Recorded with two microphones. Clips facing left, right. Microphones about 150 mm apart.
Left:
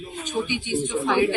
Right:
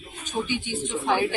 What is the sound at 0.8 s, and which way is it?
Speech, 40° left (ahead or behind).